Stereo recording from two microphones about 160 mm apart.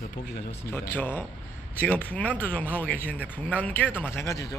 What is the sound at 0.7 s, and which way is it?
A man's voice, 15° left (ahead or behind).